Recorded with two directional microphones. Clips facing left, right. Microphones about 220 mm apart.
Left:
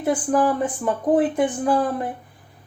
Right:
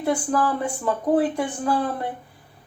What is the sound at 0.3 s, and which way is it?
Speech, 15° left (ahead or behind).